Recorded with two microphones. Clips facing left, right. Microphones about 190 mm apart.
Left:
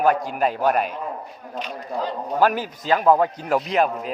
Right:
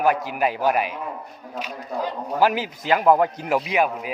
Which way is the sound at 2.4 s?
10° right (ahead or behind).